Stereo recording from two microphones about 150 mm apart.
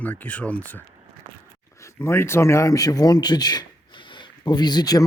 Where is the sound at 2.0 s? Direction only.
15° left (ahead or behind).